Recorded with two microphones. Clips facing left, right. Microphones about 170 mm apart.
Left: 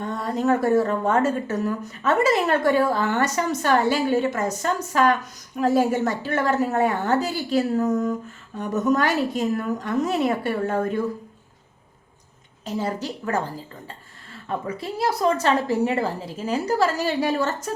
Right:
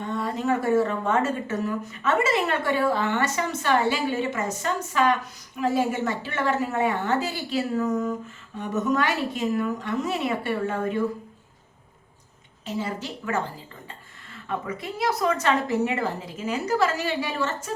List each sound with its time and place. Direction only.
0.2 s speech: 40° left (ahead or behind)
12.6 s speech: 40° left (ahead or behind)
14.4 s speech: 30° left (ahead or behind)